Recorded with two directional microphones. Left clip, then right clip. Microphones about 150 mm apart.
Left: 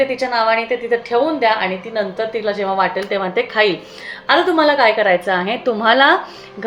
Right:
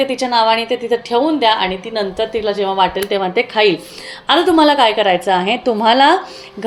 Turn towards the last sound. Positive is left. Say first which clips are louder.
# right 1 dB
turn(degrees=-35)  # may be behind; listen again after turning